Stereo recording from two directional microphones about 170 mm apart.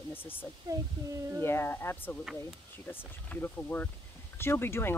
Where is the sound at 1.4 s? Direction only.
15° left (ahead or behind).